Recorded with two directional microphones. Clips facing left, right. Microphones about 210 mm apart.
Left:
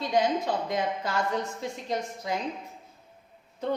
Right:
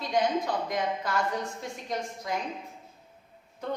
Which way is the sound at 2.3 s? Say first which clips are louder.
Left 1 dB; 25° left (ahead or behind).